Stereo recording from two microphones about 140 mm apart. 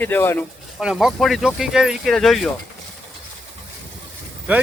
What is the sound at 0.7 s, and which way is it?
Speech, 5° right (ahead or behind).